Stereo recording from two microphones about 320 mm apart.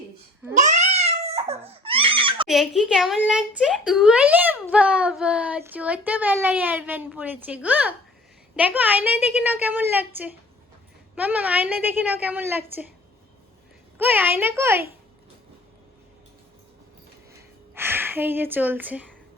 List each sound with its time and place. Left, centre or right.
0.5 s a sound: right
2.5 s speech: centre
14.0 s a child's voice: centre
17.7 s speech: centre